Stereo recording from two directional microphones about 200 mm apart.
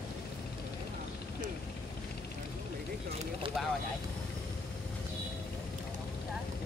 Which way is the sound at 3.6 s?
Centre (ahead or behind).